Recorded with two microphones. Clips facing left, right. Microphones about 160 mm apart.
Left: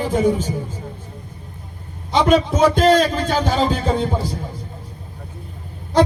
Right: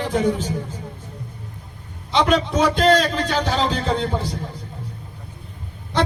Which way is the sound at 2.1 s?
45° left (ahead or behind).